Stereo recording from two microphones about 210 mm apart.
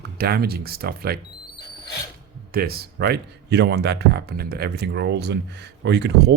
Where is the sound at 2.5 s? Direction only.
45° right (ahead or behind).